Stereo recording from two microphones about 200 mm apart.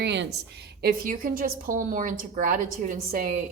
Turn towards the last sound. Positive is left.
turn(degrees=-45)  # may be behind; listen again after turning